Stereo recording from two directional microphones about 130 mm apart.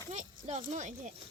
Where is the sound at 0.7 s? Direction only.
65° right (ahead or behind).